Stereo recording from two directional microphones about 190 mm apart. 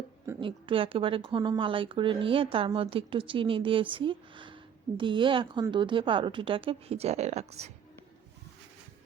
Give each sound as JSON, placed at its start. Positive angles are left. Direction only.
{"t": 0.3, "sound": "speech", "side_deg": -25}